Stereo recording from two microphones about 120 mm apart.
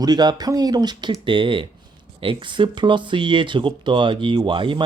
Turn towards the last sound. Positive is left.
turn(degrees=-45)  # may be behind; listen again after turning